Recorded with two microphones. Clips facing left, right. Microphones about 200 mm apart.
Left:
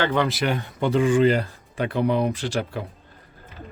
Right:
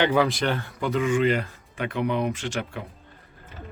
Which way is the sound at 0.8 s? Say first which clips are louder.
Left 5 dB; 30° left (ahead or behind).